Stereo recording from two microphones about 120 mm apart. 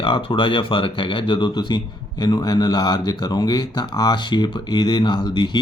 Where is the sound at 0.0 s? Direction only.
45° left (ahead or behind).